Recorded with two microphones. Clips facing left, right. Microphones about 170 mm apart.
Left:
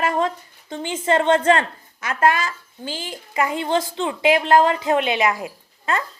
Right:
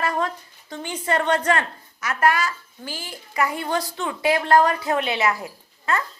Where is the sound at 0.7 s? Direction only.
25° left (ahead or behind).